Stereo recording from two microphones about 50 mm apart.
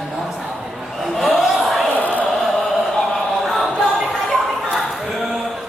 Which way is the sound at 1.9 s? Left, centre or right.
Left.